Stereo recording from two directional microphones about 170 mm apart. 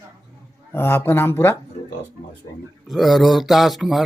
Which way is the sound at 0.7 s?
15° left (ahead or behind).